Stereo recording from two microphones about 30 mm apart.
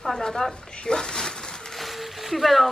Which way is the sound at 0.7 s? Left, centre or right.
Left.